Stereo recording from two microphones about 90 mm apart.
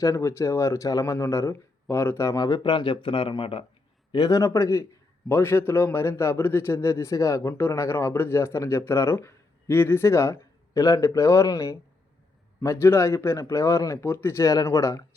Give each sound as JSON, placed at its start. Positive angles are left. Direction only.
{"t": 0.0, "sound": "speech", "side_deg": 35}
{"t": 2.6, "sound": "speech", "side_deg": 65}
{"t": 4.3, "sound": "speech", "side_deg": 35}